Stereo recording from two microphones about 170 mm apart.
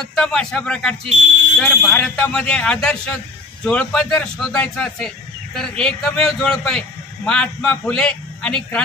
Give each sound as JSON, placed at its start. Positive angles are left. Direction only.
{"t": 0.1, "sound": "a man's voice", "side_deg": 5}